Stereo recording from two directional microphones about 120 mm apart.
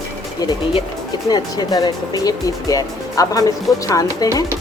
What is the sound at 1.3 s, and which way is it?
Speech, 35° left (ahead or behind).